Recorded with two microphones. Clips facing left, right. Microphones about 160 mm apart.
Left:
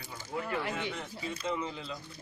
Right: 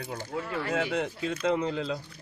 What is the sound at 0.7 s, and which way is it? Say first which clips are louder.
Speech: right 9 dB; 85° right.